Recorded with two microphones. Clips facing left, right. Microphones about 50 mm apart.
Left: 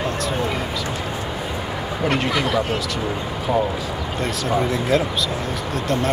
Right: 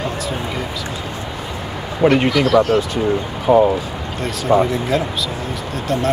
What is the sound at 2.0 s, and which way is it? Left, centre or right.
Speech, right.